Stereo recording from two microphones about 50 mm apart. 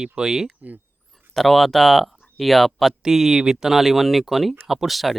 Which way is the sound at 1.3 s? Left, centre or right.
Centre.